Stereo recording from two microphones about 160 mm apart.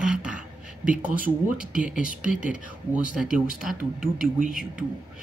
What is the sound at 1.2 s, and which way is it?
Speech, 60° right (ahead or behind).